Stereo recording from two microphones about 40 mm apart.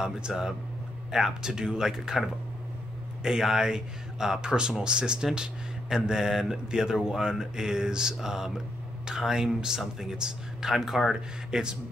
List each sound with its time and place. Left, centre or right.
0.3 s speech: centre
3.3 s speech: centre